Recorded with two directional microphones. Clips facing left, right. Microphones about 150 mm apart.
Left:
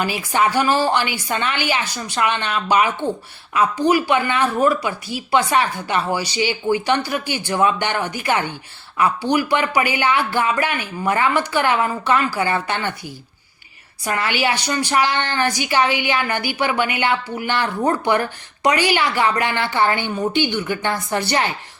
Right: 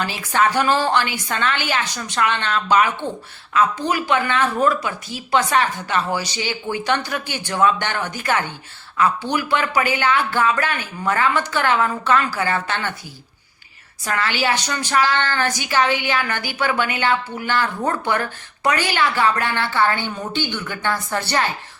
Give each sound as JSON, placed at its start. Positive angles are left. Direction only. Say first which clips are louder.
{"t": 0.0, "sound": "a woman's voice", "louder": "left 1 dB", "side_deg": 10}
{"t": 14.0, "sound": "a woman's voice", "louder": "left 1 dB", "side_deg": 15}